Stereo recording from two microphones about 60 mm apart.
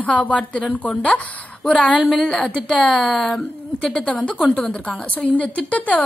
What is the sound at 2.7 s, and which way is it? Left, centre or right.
A woman's voice, centre.